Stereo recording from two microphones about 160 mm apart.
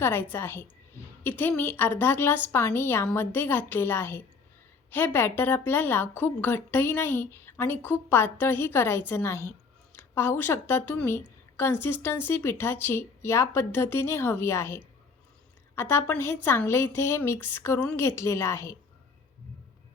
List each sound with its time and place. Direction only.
0.0 s a woman's voice: 15° left (ahead or behind)